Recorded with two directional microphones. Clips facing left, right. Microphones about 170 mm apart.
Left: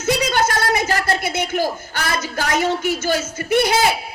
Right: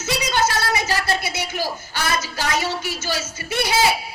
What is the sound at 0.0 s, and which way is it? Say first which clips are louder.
Speech: left 3 dB; 55° left (ahead or behind).